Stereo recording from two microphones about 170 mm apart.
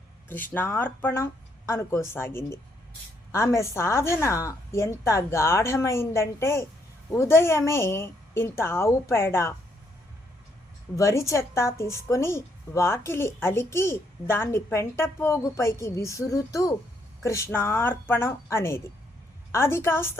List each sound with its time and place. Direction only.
0.3 s a woman's voice: 10° left (ahead or behind)
10.9 s a woman's voice: 15° left (ahead or behind)